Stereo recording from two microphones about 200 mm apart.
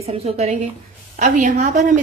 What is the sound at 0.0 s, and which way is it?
A woman's voice, 30° right (ahead or behind).